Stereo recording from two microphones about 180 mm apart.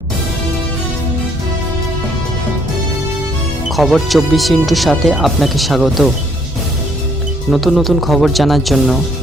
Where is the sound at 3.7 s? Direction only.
Centre (ahead or behind).